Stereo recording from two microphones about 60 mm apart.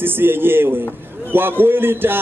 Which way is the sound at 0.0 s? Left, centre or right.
Right.